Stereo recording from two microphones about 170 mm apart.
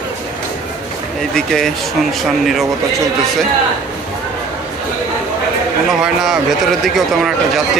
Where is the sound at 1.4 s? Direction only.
Centre (ahead or behind).